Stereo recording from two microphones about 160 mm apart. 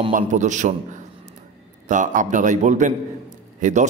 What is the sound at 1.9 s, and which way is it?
A man's voice, 55° right (ahead or behind).